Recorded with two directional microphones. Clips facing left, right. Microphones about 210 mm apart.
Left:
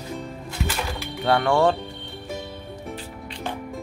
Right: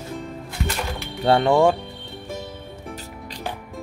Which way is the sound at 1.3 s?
20° right (ahead or behind).